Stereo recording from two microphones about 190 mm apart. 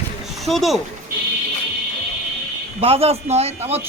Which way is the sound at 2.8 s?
30° right (ahead or behind).